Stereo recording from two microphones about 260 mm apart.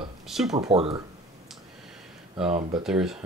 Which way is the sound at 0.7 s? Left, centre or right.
Right.